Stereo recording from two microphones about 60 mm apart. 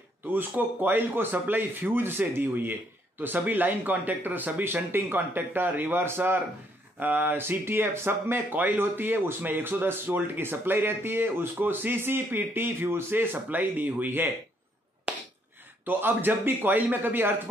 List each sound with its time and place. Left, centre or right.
0.3 s speech: right
15.1 s a sound: centre
15.8 s speech: right